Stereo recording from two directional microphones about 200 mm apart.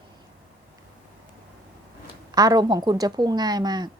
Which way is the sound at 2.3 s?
20° right (ahead or behind).